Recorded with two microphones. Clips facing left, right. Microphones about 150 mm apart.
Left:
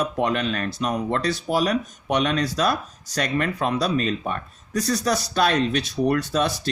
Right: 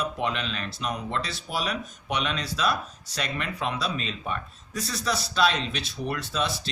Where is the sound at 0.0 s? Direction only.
45° left (ahead or behind).